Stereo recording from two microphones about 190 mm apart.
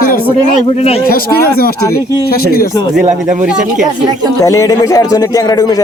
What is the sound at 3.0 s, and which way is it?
Speech, 40° right (ahead or behind).